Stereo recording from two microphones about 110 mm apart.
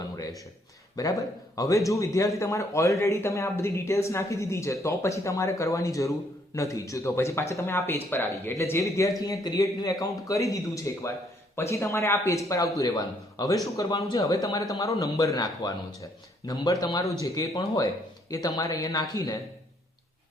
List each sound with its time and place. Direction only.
0.9 s a man's voice: 30° left (ahead or behind)